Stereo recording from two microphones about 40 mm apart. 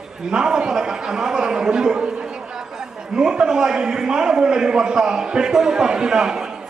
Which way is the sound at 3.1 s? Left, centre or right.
Right.